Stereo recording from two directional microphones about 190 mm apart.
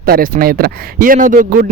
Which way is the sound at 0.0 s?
50° right (ahead or behind).